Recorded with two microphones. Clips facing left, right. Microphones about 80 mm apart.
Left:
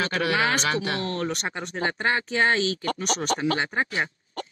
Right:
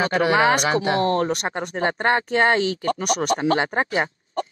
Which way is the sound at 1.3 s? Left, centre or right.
Right.